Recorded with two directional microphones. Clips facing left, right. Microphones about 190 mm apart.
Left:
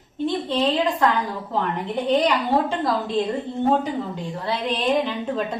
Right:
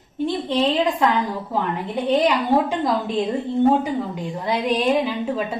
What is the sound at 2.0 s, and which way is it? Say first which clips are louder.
A woman's voice: right 2 dB; 15° right (ahead or behind).